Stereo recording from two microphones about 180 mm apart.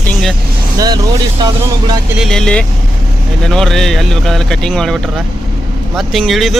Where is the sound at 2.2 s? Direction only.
5° left (ahead or behind).